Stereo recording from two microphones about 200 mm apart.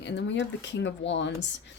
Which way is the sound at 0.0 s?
60° left (ahead or behind).